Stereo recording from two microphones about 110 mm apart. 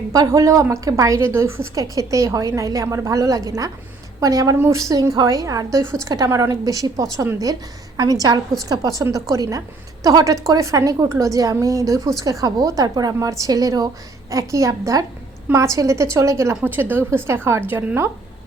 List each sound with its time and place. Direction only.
0.1 s a woman's voice: 35° right (ahead or behind)